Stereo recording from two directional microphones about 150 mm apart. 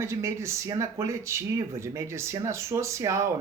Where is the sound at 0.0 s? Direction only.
20° right (ahead or behind).